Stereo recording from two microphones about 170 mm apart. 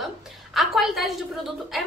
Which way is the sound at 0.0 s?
Centre (ahead or behind).